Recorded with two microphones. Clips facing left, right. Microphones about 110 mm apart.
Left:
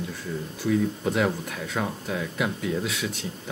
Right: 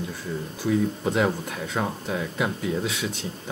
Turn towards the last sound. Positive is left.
turn(degrees=-25)  # may be behind; listen again after turning